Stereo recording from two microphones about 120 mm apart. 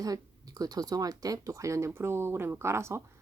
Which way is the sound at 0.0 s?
30° right (ahead or behind).